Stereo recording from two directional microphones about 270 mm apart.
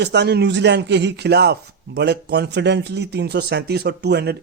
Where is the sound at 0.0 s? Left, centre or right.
Right.